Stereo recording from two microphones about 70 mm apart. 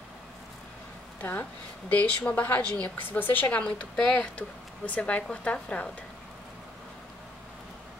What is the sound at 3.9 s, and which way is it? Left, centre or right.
Speech, centre.